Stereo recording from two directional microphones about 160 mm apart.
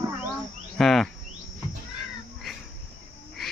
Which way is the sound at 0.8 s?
Centre (ahead or behind).